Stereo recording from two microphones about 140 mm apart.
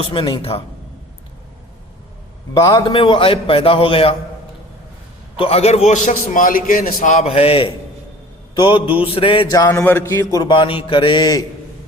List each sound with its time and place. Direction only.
0.0 s a man's voice: 35° left (ahead or behind)
2.7 s a man's voice: 35° left (ahead or behind)
5.4 s a man's voice: 45° left (ahead or behind)
9.6 s a man's voice: 15° left (ahead or behind)
10.4 s a man's voice: 35° left (ahead or behind)